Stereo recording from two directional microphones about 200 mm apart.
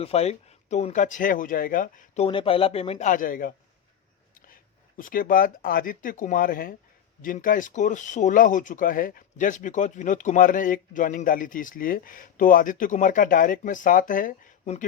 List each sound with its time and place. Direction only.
0.0 s speech: 30° left (ahead or behind)
2.2 s a man's voice: 30° left (ahead or behind); by 3.5 s 45° left (ahead or behind)
4.9 s speech: 45° left (ahead or behind)